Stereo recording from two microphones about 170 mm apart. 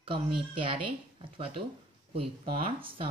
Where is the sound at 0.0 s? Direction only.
30° right (ahead or behind).